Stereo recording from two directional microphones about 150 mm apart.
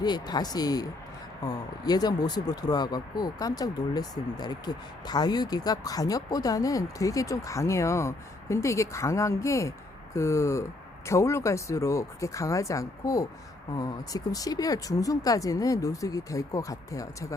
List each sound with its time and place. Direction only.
0.0 s speech: 30° left (ahead or behind)